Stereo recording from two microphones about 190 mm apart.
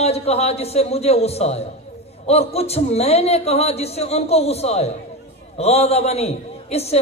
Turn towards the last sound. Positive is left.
turn(degrees=35)  # may be behind; listen again after turning